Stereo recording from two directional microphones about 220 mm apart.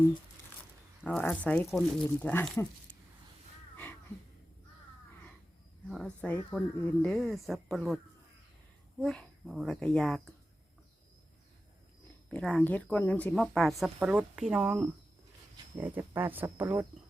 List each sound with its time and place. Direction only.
1.0 s speech: 5° left (ahead or behind)
6.2 s speech: 5° left (ahead or behind)
9.0 s speech: centre (ahead or behind)
12.3 s speech: 5° left (ahead or behind)